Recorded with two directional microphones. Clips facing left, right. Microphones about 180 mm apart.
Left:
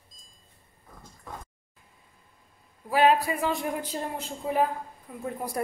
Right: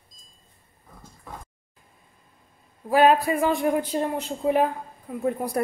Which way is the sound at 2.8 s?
45° right (ahead or behind).